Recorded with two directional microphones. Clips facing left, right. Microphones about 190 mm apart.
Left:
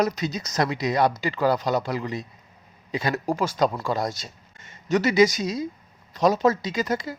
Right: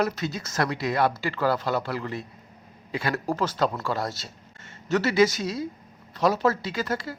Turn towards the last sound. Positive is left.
turn(degrees=15)  # may be behind; listen again after turning